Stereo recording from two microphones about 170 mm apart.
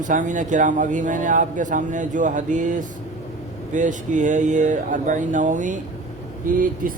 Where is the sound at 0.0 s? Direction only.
50° right (ahead or behind).